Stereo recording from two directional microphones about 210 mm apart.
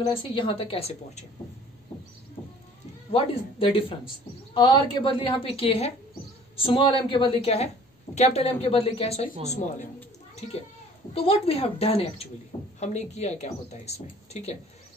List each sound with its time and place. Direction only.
0.0 s a woman's voice: 25° left (ahead or behind)
3.1 s a woman's voice: 25° left (ahead or behind)
11.1 s a woman's voice: 30° left (ahead or behind)